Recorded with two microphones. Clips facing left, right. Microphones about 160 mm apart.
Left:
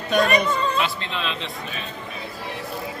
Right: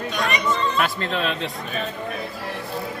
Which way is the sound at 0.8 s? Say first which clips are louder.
Right 3 dB; 45° right (ahead or behind).